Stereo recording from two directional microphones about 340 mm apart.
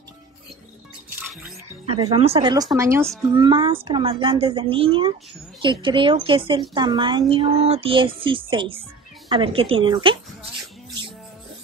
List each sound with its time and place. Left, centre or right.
1.9 s a woman's voice: centre